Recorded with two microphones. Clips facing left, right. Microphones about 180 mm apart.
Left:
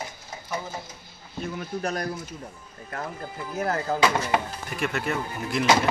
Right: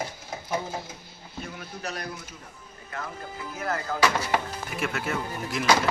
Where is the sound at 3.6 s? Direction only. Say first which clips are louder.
Left 4 dB; 35° left (ahead or behind).